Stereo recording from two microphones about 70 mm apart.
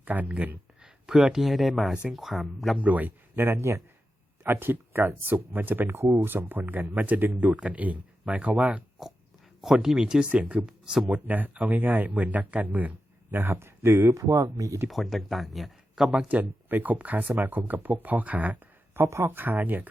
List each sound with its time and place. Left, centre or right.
0.0 s speech: right
0.8 s speech: centre
2.8 s speech: right
4.4 s speech: right
9.0 s dog: centre
9.6 s speech: centre
10.7 s speech: centre
11.1 s speech: right
14.2 s speech: right
14.8 s speech: centre
16.3 s speech: right
19.0 s speech: right
19.3 s speech: right